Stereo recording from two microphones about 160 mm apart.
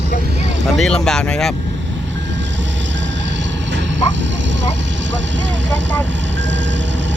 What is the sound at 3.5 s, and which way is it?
Vehicle, 90° right.